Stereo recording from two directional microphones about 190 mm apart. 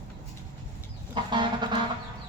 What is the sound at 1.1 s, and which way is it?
Chicken, 25° right (ahead or behind).